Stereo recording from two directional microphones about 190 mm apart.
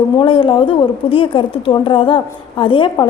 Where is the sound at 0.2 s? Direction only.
25° left (ahead or behind).